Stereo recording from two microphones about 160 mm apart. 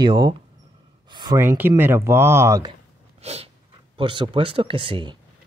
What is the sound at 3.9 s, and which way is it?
Speech, 30° right (ahead or behind).